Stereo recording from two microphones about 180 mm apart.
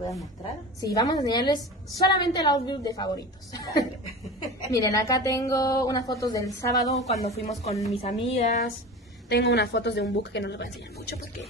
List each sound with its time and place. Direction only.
0.7 s a woman's voice: 20° left (ahead or behind)
7.1 s a woman's voice: 35° left (ahead or behind)
9.3 s a woman's voice: 70° left (ahead or behind)